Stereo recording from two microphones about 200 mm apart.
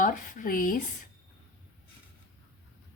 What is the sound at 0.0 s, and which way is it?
Speech, 40° left (ahead or behind).